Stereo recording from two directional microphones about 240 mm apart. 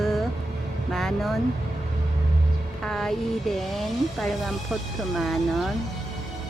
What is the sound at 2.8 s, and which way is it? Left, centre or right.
Speech, centre.